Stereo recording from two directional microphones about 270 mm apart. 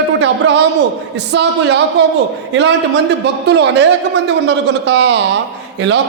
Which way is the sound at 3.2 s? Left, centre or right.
Right.